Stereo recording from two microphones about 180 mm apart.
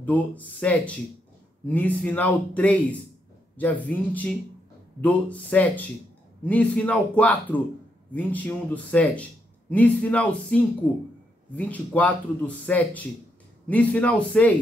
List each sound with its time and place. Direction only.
0.0 s a man's voice: 10° left (ahead or behind)